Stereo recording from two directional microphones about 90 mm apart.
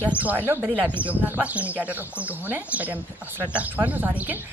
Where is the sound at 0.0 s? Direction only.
15° right (ahead or behind).